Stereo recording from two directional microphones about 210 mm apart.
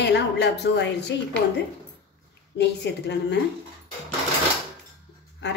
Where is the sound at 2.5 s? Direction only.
55° left (ahead or behind).